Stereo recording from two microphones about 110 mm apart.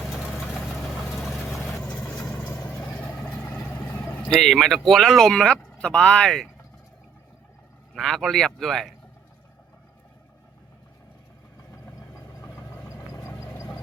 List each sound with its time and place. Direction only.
0.1 s vehicle: 5° right (ahead or behind)
3.8 s speech: 15° left (ahead or behind)
7.9 s speech: centre (ahead or behind)
12.1 s vehicle: 30° left (ahead or behind)